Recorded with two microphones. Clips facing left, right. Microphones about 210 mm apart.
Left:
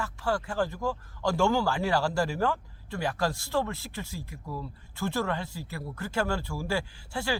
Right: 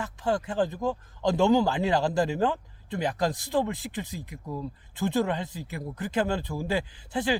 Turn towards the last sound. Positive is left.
turn(degrees=-20)  # may be behind; listen again after turning